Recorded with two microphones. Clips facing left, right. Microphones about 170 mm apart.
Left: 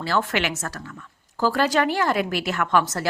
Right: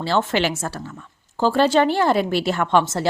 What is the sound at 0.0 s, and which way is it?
A woman's voice, 25° right (ahead or behind).